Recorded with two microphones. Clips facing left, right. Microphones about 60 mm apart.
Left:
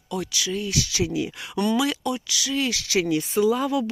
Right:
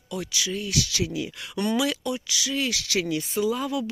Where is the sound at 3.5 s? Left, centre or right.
Left.